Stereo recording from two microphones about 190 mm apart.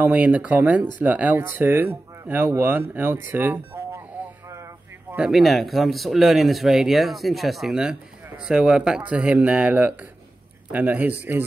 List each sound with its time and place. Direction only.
0.0 s speech: 10° right (ahead or behind)
5.1 s speech: 5° right (ahead or behind)